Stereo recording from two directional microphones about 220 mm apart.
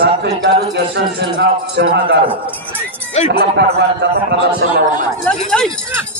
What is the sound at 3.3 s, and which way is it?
Speech, 45° right (ahead or behind).